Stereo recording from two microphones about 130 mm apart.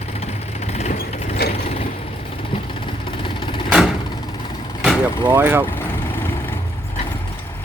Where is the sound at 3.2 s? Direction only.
40° left (ahead or behind).